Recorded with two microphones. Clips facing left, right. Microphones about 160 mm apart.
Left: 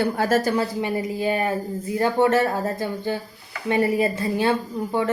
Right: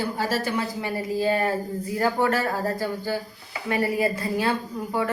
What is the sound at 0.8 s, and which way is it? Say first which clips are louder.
A woman's voice: left 1 dB; 15° left (ahead or behind).